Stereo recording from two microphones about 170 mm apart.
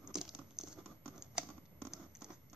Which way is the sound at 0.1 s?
5° right (ahead or behind).